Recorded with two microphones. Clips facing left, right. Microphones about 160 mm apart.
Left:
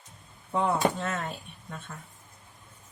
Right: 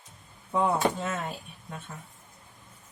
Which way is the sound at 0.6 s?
5° right (ahead or behind).